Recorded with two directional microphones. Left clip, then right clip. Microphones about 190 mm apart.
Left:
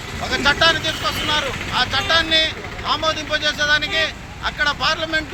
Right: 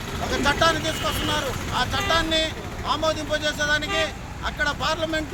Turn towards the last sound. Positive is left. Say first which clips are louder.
# left 5 dB
turn(degrees=-10)  # may be behind; listen again after turning